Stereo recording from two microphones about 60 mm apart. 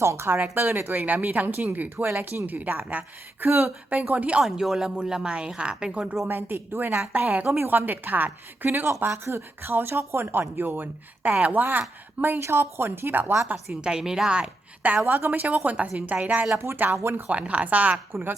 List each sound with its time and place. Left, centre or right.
0.0 s speech: right
0.3 s speech: right
4.4 s a woman's voice: centre
6.2 s speech: right
12.4 s speech: right
13.8 s a woman's voice: centre
15.0 s speech: right
15.3 s speech: right
16.6 s speech: right
17.2 s speech: right